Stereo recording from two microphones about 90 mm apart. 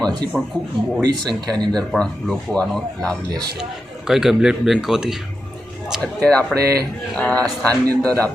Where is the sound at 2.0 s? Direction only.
10° left (ahead or behind).